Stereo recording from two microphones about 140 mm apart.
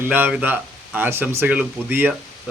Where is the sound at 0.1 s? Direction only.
10° right (ahead or behind).